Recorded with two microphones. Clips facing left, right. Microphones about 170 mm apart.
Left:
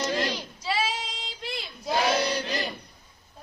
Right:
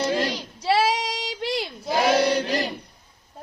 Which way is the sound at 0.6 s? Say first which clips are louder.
Right 9 dB; 65° right (ahead or behind).